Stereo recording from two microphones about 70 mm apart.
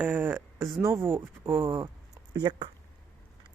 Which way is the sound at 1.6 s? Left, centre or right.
Right.